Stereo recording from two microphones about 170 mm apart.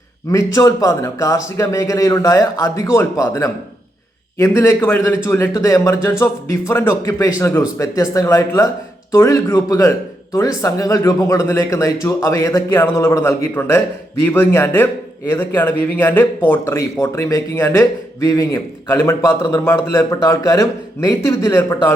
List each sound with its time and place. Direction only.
0.3 s speech: 20° left (ahead or behind)